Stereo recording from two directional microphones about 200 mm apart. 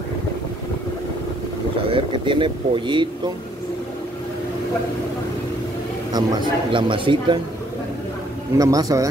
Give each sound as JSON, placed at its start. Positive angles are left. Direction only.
{"t": 1.9, "sound": "speech", "side_deg": -25}
{"t": 6.1, "sound": "a man's voice", "side_deg": -20}
{"t": 8.5, "sound": "speech", "side_deg": -20}